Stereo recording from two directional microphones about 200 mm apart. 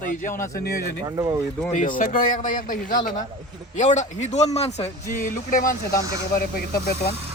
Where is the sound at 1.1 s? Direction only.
15° right (ahead or behind).